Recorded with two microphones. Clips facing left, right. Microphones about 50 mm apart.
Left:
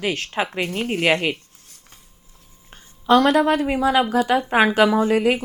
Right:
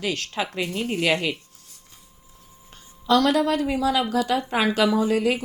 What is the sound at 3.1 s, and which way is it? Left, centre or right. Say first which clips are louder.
A woman's voice: left 4 dB; left.